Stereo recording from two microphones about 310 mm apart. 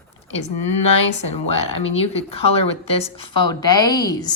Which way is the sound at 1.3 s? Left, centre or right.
Centre.